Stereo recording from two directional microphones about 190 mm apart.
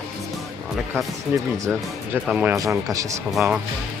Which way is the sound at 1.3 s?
10° right (ahead or behind).